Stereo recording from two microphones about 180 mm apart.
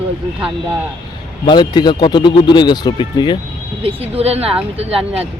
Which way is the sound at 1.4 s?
25° left (ahead or behind).